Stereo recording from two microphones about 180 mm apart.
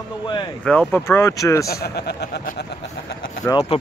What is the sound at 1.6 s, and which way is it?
A man's voice, 60° left (ahead or behind).